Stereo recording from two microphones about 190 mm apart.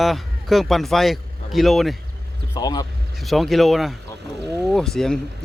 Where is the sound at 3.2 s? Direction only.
Centre (ahead or behind).